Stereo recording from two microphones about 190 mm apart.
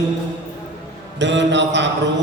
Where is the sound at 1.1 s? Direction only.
70° right (ahead or behind).